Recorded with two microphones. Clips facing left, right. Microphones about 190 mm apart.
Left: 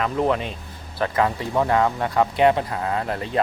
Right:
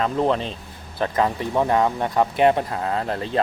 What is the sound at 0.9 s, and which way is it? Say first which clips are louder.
Speech: even; 20° right (ahead or behind).